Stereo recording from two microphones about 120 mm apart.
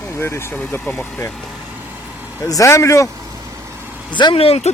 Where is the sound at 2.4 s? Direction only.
30° left (ahead or behind).